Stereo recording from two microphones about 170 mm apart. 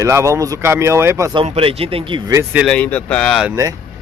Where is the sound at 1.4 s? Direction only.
35° right (ahead or behind).